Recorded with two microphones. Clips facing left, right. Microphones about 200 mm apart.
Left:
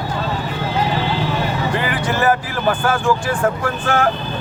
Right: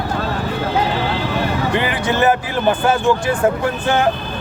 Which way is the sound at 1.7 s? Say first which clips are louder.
Right 4 dB; 20° right (ahead or behind).